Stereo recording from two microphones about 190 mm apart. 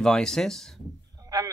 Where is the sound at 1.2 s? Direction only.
20° right (ahead or behind).